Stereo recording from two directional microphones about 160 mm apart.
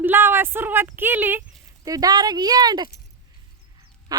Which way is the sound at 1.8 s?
25° right (ahead or behind).